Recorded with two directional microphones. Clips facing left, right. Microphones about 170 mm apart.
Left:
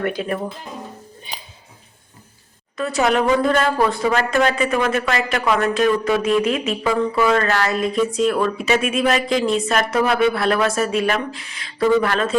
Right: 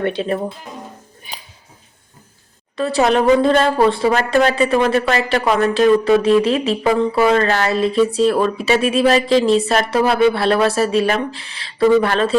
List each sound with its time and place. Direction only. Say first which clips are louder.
0.0 s speech: right 3 dB; 25° right (ahead or behind)
2.7 s speech: right 3 dB; 30° right (ahead or behind)